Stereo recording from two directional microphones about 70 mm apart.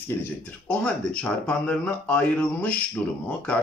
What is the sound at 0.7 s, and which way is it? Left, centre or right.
Speech, centre.